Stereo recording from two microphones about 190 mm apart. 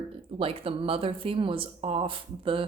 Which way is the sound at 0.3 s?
30° right (ahead or behind).